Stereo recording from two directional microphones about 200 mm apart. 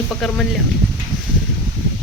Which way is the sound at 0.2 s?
Centre (ahead or behind).